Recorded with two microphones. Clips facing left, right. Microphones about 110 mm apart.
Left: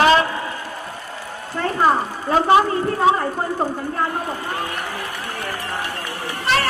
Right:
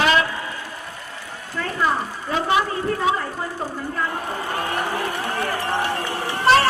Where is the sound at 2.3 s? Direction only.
40° left (ahead or behind).